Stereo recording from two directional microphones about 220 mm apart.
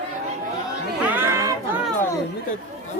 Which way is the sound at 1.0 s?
10° right (ahead or behind).